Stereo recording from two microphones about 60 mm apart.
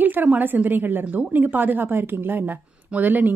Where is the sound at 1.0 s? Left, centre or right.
Right.